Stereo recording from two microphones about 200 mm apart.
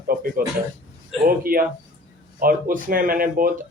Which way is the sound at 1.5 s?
45° right (ahead or behind).